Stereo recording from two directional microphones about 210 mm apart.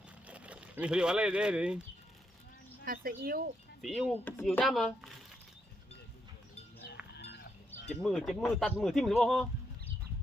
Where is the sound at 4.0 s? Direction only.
Centre (ahead or behind).